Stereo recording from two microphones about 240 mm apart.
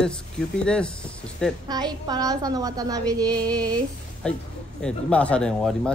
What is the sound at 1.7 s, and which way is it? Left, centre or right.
A woman's voice, centre.